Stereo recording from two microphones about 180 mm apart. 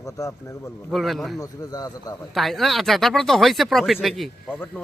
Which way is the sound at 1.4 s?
20° left (ahead or behind).